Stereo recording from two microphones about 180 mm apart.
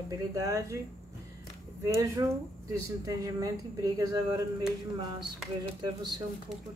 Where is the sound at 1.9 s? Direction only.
20° right (ahead or behind).